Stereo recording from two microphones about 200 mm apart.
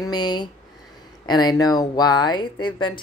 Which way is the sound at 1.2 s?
20° left (ahead or behind).